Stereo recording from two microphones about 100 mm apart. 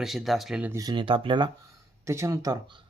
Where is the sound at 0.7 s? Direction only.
35° right (ahead or behind).